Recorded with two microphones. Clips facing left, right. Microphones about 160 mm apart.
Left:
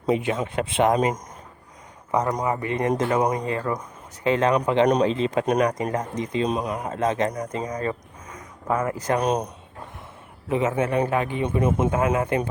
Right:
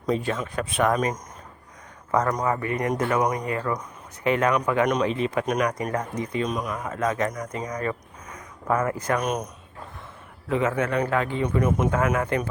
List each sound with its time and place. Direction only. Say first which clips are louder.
0.0 s a man's voice: left 3 dB; 20° left (ahead or behind)
2.1 s a man's voice: even; 20° left (ahead or behind)
9.1 s speech: left 6 dB; 30° left (ahead or behind)
10.5 s a man's voice: left 1 dB; 20° left (ahead or behind)